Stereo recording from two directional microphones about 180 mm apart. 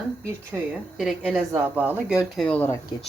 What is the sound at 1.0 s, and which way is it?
Speech, centre (ahead or behind).